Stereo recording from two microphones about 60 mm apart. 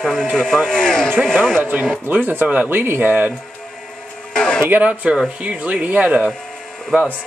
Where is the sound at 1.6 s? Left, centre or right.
Right.